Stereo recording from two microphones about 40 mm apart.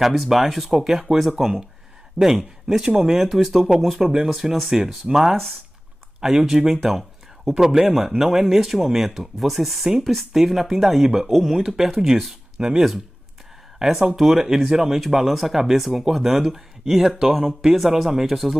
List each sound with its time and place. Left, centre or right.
0.0 s speech: centre
4.3 s speech: centre
12.5 s speech: centre